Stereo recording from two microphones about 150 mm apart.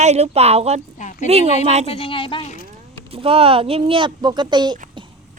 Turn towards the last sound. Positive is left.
turn(degrees=-30)  # may be behind; listen again after turning